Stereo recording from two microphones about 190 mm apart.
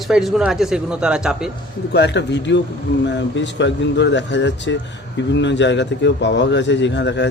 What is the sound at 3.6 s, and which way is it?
A man's voice, 70° left (ahead or behind).